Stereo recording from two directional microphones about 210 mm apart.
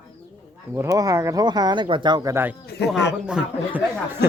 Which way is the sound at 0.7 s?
15° right (ahead or behind).